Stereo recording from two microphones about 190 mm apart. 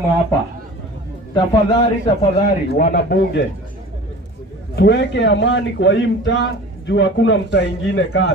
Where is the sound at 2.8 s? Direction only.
50° left (ahead or behind).